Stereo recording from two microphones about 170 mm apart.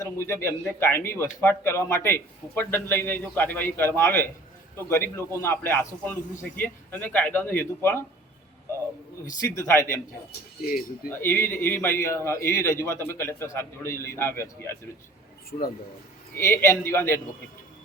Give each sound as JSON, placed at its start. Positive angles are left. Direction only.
{"t": 0.0, "sound": "a man's voice", "side_deg": 15}
{"t": 9.6, "sound": "a man's voice", "side_deg": 15}
{"t": 10.6, "sound": "speech", "side_deg": 60}
{"t": 11.1, "sound": "a man's voice", "side_deg": 15}
{"t": 15.4, "sound": "speech", "side_deg": 60}
{"t": 16.4, "sound": "a man's voice", "side_deg": 15}